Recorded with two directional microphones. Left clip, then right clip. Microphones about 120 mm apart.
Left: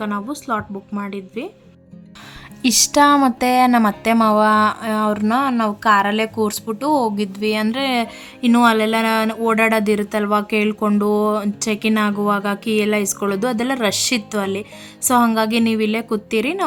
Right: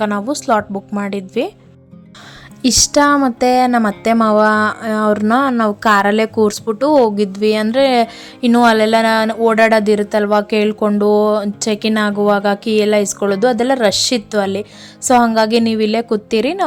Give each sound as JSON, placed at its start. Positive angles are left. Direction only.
{"t": 0.2, "sound": "speech", "side_deg": -45}
{"t": 2.6, "sound": "a woman's voice", "side_deg": -20}